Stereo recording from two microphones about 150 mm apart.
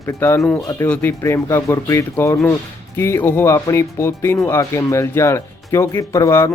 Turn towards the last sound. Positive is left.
turn(degrees=20)  # may be behind; listen again after turning